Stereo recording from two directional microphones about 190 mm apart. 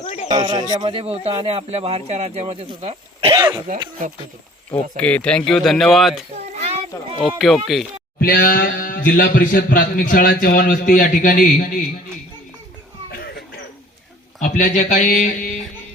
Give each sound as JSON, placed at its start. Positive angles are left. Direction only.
{"t": 0.0, "sound": "a sound", "side_deg": 40}
{"t": 0.3, "sound": "speech", "side_deg": -20}
{"t": 4.9, "sound": "speech", "side_deg": 5}
{"t": 6.3, "sound": "a sound", "side_deg": -35}
{"t": 7.3, "sound": "speech", "side_deg": 0}
{"t": 8.2, "sound": "a man's voice", "side_deg": 50}
{"t": 14.4, "sound": "speech", "side_deg": 40}